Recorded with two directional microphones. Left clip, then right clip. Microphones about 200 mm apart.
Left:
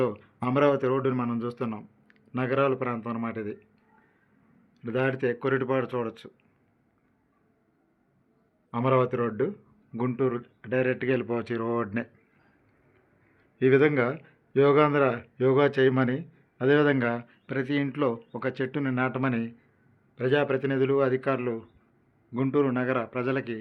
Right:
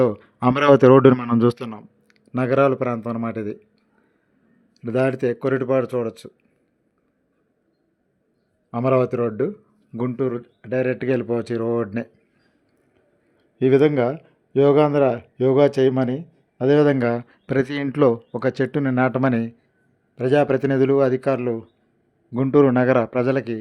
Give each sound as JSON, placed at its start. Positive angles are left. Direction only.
{"t": 0.0, "sound": "speech", "side_deg": -45}
{"t": 0.4, "sound": "speech", "side_deg": -55}
{"t": 4.8, "sound": "a man's voice", "side_deg": -40}
{"t": 8.7, "sound": "a man's voice", "side_deg": -35}
{"t": 13.6, "sound": "a man's voice", "side_deg": -30}